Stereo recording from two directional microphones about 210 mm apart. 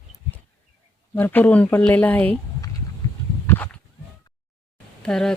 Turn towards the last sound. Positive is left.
turn(degrees=5)  # may be behind; listen again after turning